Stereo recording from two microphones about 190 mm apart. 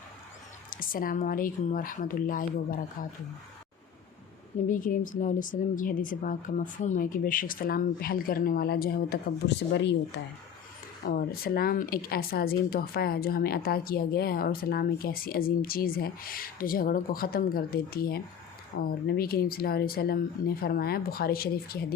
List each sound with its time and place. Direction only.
0.7 s speech: 45° left (ahead or behind)
4.7 s speech: 45° left (ahead or behind)
11.0 s speech: 50° left (ahead or behind)